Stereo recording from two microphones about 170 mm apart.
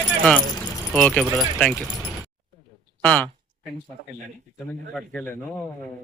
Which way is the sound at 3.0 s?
10° left (ahead or behind).